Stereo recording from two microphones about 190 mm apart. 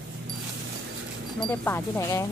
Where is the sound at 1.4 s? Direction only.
10° left (ahead or behind).